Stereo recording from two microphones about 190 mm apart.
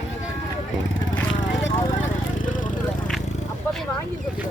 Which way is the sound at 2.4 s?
45° left (ahead or behind).